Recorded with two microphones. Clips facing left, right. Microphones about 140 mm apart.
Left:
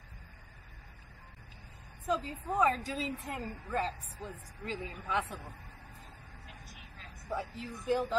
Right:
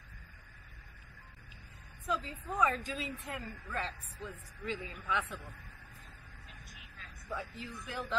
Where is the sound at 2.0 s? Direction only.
35° left (ahead or behind).